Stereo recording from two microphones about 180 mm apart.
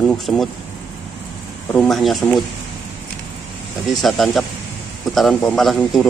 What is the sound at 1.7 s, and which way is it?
Speech, centre (ahead or behind).